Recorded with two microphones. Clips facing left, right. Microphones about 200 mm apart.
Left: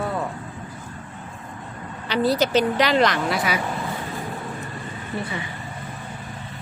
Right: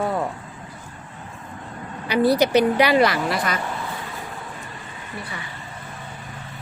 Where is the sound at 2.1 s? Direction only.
10° right (ahead or behind); by 3.6 s 5° left (ahead or behind).